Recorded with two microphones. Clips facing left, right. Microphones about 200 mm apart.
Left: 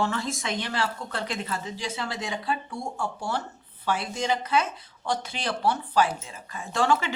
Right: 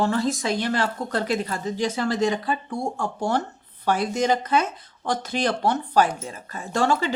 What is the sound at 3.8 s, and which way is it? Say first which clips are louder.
Speech: right 5 dB; 45° right (ahead or behind).